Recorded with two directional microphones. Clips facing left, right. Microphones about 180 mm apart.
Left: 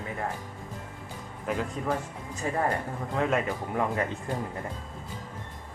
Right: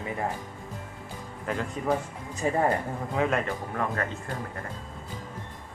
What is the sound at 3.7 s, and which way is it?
Speech, 15° left (ahead or behind).